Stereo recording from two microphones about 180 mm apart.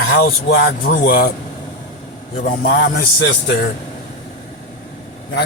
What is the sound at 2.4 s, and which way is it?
Speech, 50° left (ahead or behind).